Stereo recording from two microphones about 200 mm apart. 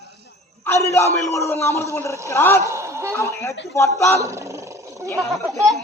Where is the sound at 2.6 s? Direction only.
15° right (ahead or behind).